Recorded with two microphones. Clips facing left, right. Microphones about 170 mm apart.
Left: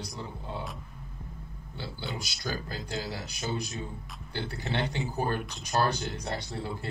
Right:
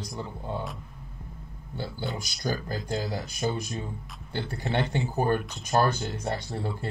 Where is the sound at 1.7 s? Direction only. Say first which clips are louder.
Right 4 dB; 45° right (ahead or behind).